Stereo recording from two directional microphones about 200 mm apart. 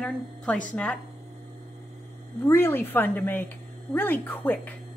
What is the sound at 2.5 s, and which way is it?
A woman's voice, 10° left (ahead or behind).